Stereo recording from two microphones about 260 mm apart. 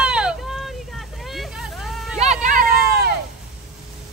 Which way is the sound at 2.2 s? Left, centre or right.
Right.